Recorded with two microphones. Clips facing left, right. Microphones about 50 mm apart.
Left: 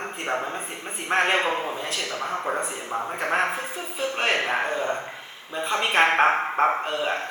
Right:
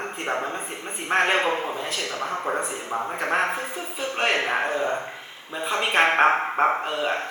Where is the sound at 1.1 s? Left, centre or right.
Centre.